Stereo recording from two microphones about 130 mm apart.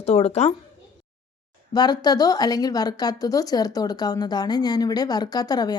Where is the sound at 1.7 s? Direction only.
30° left (ahead or behind).